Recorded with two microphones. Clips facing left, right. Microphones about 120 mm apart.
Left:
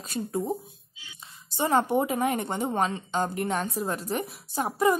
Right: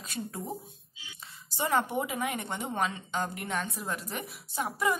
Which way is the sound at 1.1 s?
25° left (ahead or behind).